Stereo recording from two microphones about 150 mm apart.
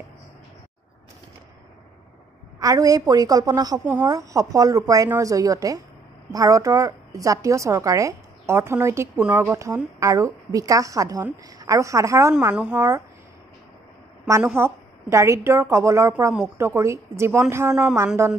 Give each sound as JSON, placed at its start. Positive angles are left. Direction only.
{"t": 2.6, "sound": "a woman's voice", "side_deg": -25}
{"t": 12.5, "sound": "speech", "side_deg": -5}
{"t": 14.4, "sound": "a woman's voice", "side_deg": -15}